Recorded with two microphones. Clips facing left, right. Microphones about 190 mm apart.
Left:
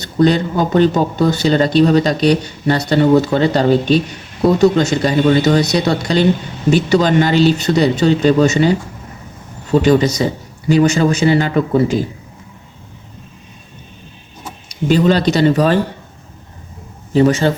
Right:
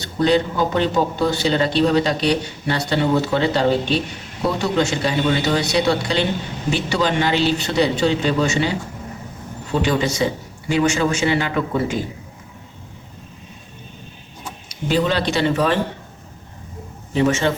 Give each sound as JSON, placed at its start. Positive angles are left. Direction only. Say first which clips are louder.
{"t": 0.0, "sound": "speech", "louder": "left 4 dB", "side_deg": 45}
{"t": 9.8, "sound": "speech", "louder": "left 5 dB", "side_deg": 40}
{"t": 14.8, "sound": "speech", "louder": "left 6 dB", "side_deg": 45}
{"t": 17.1, "sound": "a man's voice", "louder": "left 6 dB", "side_deg": 35}